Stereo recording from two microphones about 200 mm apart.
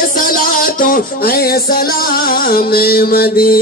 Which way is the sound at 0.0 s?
45° left (ahead or behind).